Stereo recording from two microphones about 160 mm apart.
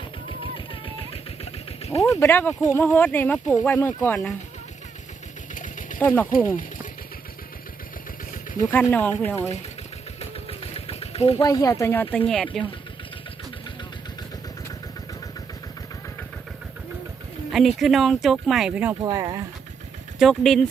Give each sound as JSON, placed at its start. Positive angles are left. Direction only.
{"t": 0.3, "sound": "a sound", "side_deg": 35}
{"t": 2.0, "sound": "speech", "side_deg": 15}
{"t": 5.5, "sound": "a sound", "side_deg": 55}
{"t": 6.0, "sound": "speech", "side_deg": 15}
{"t": 8.9, "sound": "speech", "side_deg": 10}
{"t": 10.8, "sound": "engine", "side_deg": 40}
{"t": 11.4, "sound": "speech", "side_deg": 20}
{"t": 17.5, "sound": "speech", "side_deg": 0}
{"t": 19.0, "sound": "speech", "side_deg": -20}
{"t": 20.1, "sound": "speech", "side_deg": 0}